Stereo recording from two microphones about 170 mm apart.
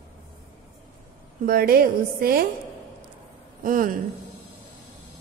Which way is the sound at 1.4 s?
60° right (ahead or behind).